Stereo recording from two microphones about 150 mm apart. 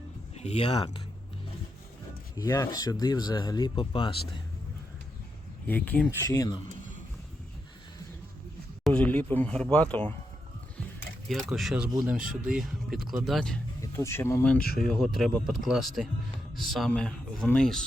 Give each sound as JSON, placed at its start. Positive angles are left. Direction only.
{"t": 0.3, "sound": "speech", "side_deg": 45}
{"t": 2.3, "sound": "speech", "side_deg": 25}
{"t": 5.6, "sound": "speech", "side_deg": 10}
{"t": 6.2, "sound": "speech", "side_deg": 25}
{"t": 8.8, "sound": "speech", "side_deg": 10}
{"t": 11.5, "sound": "speech", "side_deg": -5}
{"t": 13.8, "sound": "speech", "side_deg": 20}
{"t": 14.8, "sound": "speech", "side_deg": 0}